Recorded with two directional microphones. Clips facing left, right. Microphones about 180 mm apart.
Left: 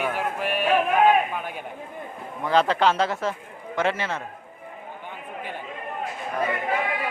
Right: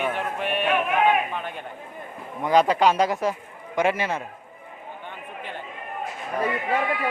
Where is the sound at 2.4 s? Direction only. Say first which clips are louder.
Right 2 dB; 10° right (ahead or behind).